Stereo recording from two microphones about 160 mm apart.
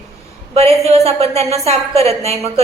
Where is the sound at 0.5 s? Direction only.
40° right (ahead or behind).